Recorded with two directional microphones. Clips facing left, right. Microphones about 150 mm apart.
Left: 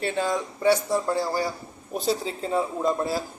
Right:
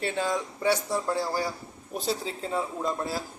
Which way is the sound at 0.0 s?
10° right (ahead or behind).